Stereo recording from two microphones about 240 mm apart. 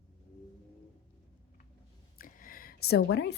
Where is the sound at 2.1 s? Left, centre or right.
Left.